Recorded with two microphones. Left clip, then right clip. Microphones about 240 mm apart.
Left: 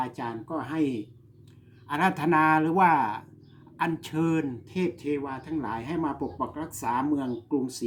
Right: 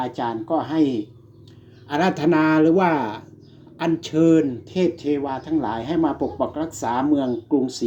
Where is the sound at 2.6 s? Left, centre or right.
Left.